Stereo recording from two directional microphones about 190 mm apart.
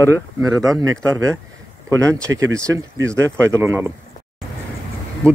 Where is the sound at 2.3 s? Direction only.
90° right.